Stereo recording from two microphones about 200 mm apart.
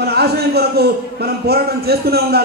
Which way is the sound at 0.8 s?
50° right (ahead or behind).